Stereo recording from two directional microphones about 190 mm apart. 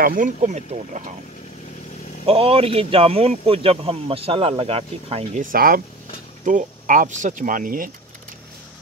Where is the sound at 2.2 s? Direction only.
30° right (ahead or behind).